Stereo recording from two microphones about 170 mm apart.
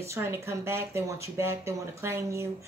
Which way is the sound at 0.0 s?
15° right (ahead or behind).